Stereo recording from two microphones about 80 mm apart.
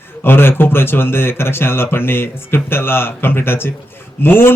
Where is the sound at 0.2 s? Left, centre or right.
Left.